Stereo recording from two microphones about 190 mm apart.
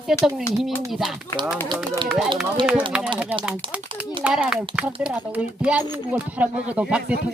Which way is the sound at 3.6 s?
25° right (ahead or behind).